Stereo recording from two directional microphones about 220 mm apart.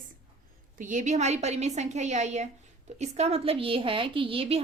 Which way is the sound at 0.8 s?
35° right (ahead or behind).